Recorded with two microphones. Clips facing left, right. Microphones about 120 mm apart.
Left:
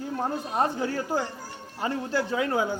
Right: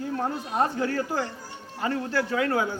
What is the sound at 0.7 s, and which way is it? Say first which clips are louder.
Speech: right 1 dB; 15° left (ahead or behind).